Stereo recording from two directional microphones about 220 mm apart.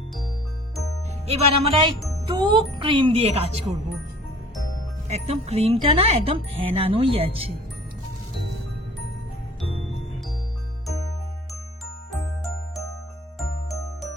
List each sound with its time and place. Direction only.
1.2 s speech: 25° right (ahead or behind)
5.0 s speech: 30° right (ahead or behind)